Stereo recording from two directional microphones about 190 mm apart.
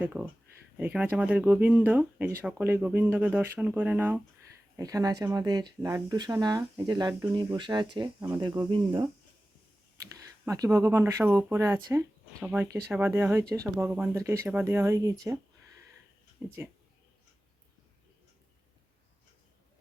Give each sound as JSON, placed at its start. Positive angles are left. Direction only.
{"t": 0.0, "sound": "speech", "side_deg": -5}
{"t": 10.4, "sound": "speech", "side_deg": -15}
{"t": 16.4, "sound": "speech", "side_deg": -5}